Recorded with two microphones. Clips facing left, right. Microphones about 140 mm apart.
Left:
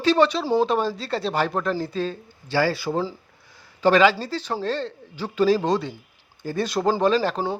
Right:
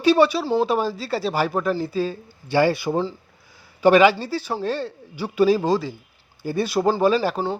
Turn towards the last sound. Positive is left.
turn(degrees=-10)  # may be behind; listen again after turning